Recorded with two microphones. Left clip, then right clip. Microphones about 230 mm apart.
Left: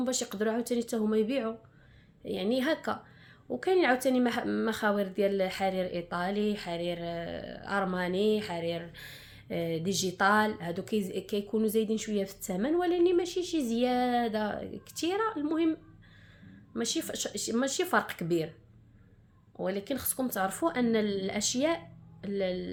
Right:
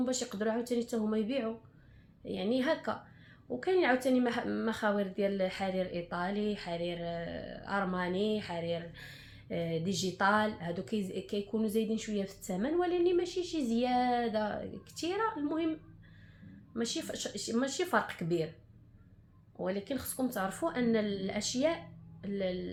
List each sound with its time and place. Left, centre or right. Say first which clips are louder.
0.0 s speech: left 3 dB; left
16.7 s speech: left 3 dB; left
19.5 s speech: left 3 dB; left